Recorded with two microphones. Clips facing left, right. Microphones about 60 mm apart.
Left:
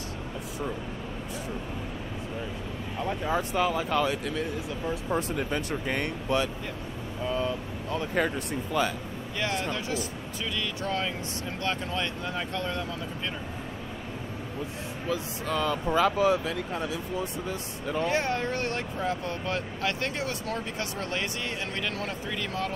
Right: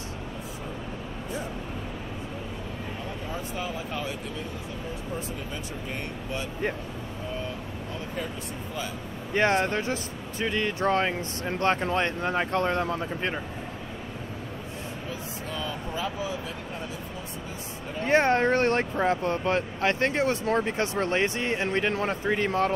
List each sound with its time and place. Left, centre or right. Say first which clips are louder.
3.3 s speech: left 8 dB; left
5.1 s speech: left 8 dB; left
7.9 s speech: left 8 dB; left
9.3 s speech: right 7 dB; right
15.0 s speech: left 9 dB; left
18.0 s speech: right 8 dB; right